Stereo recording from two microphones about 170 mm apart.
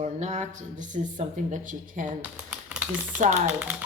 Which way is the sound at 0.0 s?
45° right (ahead or behind).